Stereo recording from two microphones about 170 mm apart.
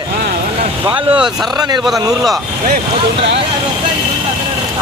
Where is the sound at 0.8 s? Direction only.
30° right (ahead or behind).